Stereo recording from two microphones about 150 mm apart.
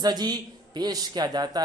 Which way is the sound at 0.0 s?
25° right (ahead or behind).